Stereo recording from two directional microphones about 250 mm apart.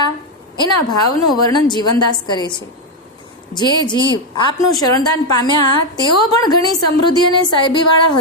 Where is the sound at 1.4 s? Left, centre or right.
Centre.